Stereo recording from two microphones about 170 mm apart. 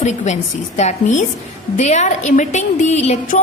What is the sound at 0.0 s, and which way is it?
A woman's voice, 45° left (ahead or behind).